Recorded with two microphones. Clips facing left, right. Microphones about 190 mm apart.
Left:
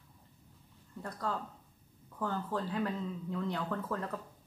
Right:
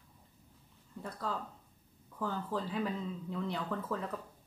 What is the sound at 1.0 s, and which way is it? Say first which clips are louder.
Speech: left 1 dB; centre (ahead or behind).